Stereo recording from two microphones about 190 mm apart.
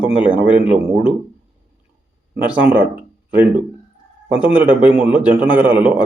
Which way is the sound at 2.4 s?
5° right (ahead or behind).